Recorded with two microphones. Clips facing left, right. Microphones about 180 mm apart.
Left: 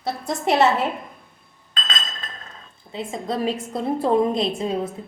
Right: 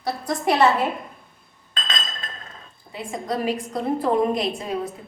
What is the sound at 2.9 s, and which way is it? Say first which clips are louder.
A woman's voice: left 1 dB; 25° left (ahead or behind).